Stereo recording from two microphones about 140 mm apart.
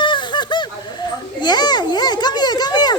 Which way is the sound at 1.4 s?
30° left (ahead or behind).